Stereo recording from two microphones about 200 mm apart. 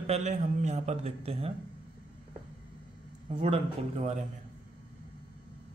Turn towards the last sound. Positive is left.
turn(degrees=-35)  # may be behind; listen again after turning